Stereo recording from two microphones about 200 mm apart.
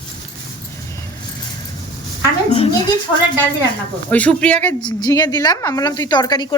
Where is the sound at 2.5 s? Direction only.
25° left (ahead or behind).